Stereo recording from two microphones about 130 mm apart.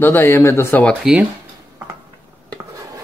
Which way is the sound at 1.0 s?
5° right (ahead or behind).